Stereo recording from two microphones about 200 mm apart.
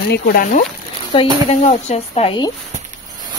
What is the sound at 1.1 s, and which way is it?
Speech, 25° left (ahead or behind).